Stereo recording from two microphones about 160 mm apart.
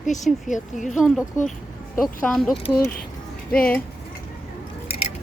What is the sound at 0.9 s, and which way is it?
Speech, centre (ahead or behind).